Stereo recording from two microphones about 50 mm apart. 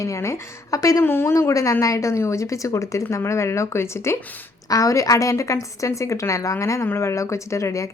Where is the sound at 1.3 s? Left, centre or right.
Left.